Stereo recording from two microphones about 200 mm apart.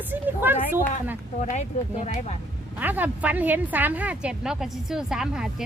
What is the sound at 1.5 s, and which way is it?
Speech, 35° left (ahead or behind).